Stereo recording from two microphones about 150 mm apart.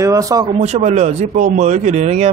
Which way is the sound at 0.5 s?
50° right (ahead or behind).